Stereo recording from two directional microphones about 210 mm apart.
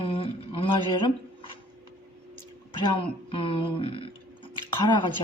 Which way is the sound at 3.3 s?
25° left (ahead or behind).